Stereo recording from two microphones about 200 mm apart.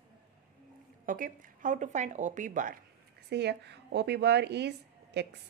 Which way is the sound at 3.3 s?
55° right (ahead or behind).